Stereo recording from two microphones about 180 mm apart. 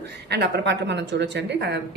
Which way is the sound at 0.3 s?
70° right (ahead or behind).